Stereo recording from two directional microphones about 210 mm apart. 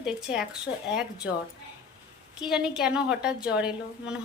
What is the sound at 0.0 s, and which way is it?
Speech, 5° right (ahead or behind).